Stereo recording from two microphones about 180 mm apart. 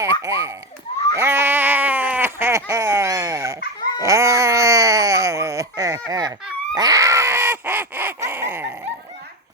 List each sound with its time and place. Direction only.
0.0 s speech: 15° right (ahead or behind)
4.0 s wail: 15° right (ahead or behind)
6.1 s a sound: 20° right (ahead or behind)